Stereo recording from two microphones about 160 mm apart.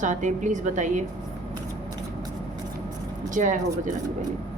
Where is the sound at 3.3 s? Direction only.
55° right (ahead or behind).